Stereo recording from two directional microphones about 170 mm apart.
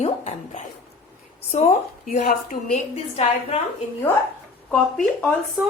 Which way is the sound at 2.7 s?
40° left (ahead or behind).